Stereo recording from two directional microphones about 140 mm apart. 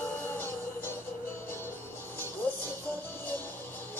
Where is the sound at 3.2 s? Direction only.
15° left (ahead or behind).